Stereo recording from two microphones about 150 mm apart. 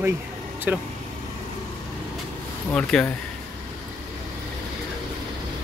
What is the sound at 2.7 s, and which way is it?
Speech, 5° left (ahead or behind).